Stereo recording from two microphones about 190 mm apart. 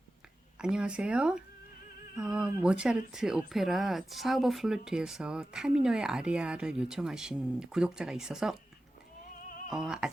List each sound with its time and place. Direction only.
0.6 s speech: 5° right (ahead or behind)
9.7 s speech: 5° right (ahead or behind)